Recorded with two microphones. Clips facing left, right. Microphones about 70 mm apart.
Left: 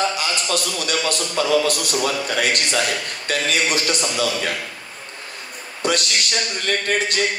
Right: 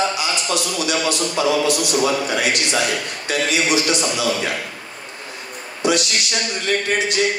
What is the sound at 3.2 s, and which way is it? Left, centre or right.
Speech, left.